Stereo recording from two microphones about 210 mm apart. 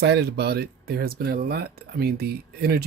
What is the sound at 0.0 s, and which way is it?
Speech, 55° right (ahead or behind).